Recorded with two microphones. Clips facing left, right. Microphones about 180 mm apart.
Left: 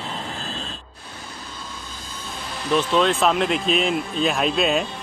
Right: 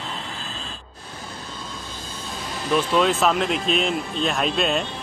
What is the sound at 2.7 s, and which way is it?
Speech, 5° right (ahead or behind).